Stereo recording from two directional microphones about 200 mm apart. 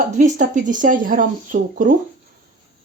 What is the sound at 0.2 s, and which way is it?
Speech, 40° right (ahead or behind).